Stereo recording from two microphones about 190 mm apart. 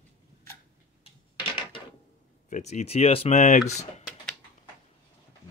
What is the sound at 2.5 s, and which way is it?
Speech, 35° left (ahead or behind).